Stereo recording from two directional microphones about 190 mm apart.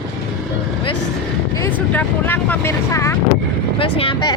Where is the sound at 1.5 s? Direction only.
15° left (ahead or behind).